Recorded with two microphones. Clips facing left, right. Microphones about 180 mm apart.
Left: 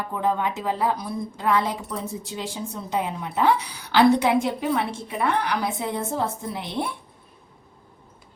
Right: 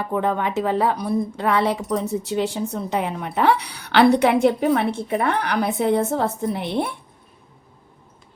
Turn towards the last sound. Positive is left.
turn(degrees=-60)  # may be behind; listen again after turning